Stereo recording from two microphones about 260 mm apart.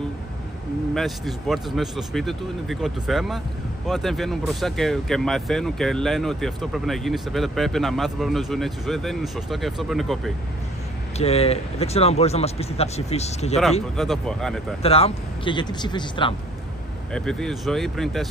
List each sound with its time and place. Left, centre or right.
0.9 s speech: centre
11.1 s speech: left
13.9 s speech: centre
14.8 s speech: left
17.1 s speech: centre